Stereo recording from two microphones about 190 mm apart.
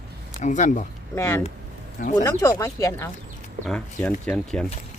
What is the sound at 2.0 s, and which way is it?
Speech, 45° left (ahead or behind).